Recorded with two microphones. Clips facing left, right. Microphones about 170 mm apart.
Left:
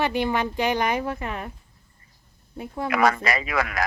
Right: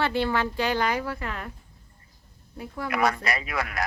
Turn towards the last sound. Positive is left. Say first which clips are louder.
# left 4 dB
turn(degrees=90)